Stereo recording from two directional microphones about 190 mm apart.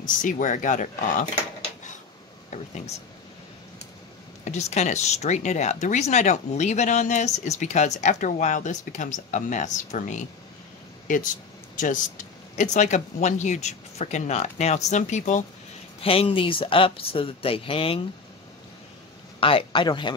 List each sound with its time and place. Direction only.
0.2 s speech: 45° left (ahead or behind)
2.5 s speech: 40° left (ahead or behind)
4.5 s speech: 35° left (ahead or behind)
11.7 s a sound: 45° left (ahead or behind)
12.7 s speech: 40° left (ahead or behind)
19.4 s speech: 25° left (ahead or behind)